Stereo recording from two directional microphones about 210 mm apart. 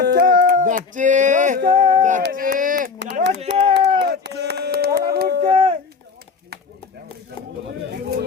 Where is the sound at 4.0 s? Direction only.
50° right (ahead or behind).